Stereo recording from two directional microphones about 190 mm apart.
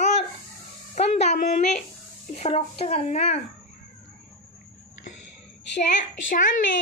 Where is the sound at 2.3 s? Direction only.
30° left (ahead or behind).